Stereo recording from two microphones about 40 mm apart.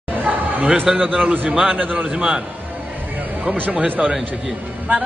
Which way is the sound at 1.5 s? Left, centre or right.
Right.